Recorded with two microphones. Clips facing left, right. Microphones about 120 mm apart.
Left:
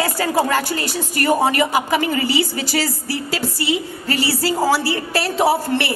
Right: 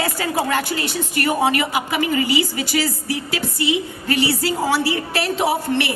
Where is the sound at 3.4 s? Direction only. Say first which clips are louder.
Even; 15° right (ahead or behind).